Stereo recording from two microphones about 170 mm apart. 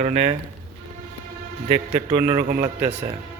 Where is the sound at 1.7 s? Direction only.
40° right (ahead or behind).